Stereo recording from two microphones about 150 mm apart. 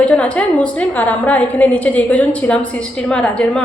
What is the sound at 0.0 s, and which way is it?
A woman's voice, 10° left (ahead or behind).